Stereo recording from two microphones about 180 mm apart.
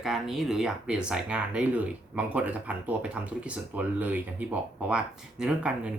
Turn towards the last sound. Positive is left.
turn(degrees=-5)  # may be behind; listen again after turning